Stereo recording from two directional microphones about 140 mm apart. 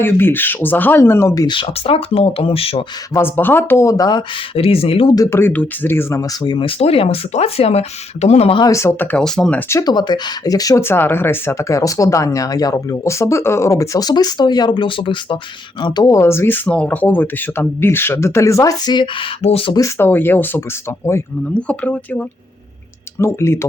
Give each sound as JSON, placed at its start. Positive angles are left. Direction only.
{"t": 0.0, "sound": "speech", "side_deg": 15}
{"t": 1.5, "sound": "speech", "side_deg": 40}
{"t": 3.2, "sound": "speech", "side_deg": 15}
{"t": 4.5, "sound": "speech", "side_deg": 45}
{"t": 5.1, "sound": "speech", "side_deg": 20}
{"t": 6.4, "sound": "speech", "side_deg": 35}
{"t": 8.6, "sound": "speech", "side_deg": 20}
{"t": 9.6, "sound": "speech", "side_deg": 20}
{"t": 19.4, "sound": "speech", "side_deg": 45}
{"t": 19.7, "sound": "speech", "side_deg": 20}